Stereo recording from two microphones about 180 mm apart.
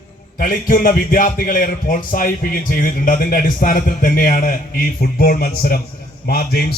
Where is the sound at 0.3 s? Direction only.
50° left (ahead or behind).